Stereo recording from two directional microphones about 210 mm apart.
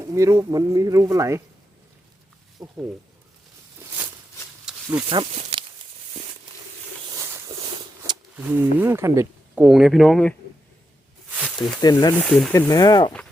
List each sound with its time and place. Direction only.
0.0 s speech: 15° right (ahead or behind)
2.6 s speech: 10° right (ahead or behind)
4.6 s snake: 5° right (ahead or behind)
5.0 s speech: 25° right (ahead or behind)
7.2 s a sound: 15° right (ahead or behind)
8.4 s speech: 10° right (ahead or behind)
11.8 s speech: 20° left (ahead or behind)
12.2 s speech: centre (ahead or behind)
12.5 s speech: 15° left (ahead or behind)